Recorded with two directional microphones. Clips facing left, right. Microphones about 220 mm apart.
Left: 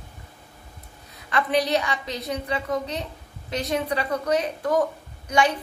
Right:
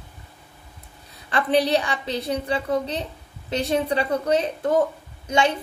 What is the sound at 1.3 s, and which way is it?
A woman's voice, 30° right (ahead or behind).